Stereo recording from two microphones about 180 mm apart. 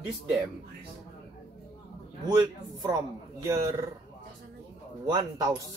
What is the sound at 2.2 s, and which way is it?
Speech, 20° right (ahead or behind).